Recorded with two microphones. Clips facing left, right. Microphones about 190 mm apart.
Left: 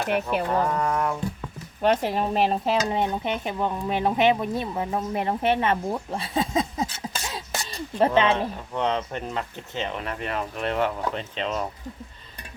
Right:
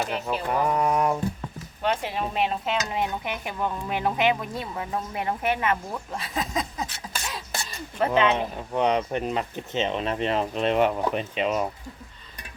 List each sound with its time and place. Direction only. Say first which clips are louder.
0.3 s speech: left 1 dB; 15° right (ahead or behind)
1.8 s speech: left 5 dB; 40° left (ahead or behind); by 6.8 s 25° left (ahead or behind)
7.3 s a sound: left 1 dB; 30° left (ahead or behind)
8.7 s speech: right 4 dB; 15° right (ahead or behind)